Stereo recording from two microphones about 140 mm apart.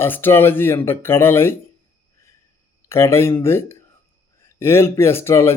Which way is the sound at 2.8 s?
20° left (ahead or behind).